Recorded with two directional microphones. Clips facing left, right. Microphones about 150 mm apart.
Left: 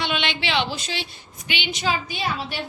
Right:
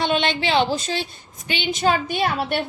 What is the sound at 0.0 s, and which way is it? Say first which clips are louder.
A woman's voice: right 5 dB; 40° right (ahead or behind).